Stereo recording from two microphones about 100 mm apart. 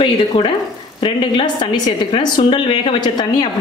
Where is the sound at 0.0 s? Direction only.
55° left (ahead or behind).